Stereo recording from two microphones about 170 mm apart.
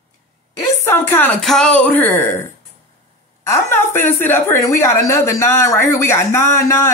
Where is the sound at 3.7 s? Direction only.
15° left (ahead or behind).